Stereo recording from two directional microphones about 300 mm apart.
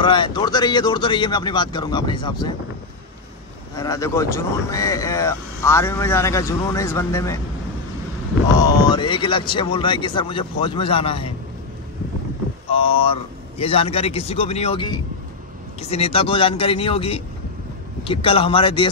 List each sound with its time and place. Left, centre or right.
0.0 s speech: centre
3.7 s speech: centre
8.5 s speech: centre
12.7 s a man's voice: centre